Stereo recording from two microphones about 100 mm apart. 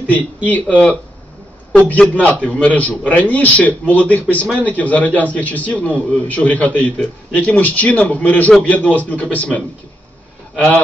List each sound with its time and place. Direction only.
0.5 s a man's voice: 15° left (ahead or behind)